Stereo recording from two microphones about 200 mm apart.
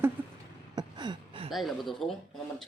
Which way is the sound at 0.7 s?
20° right (ahead or behind).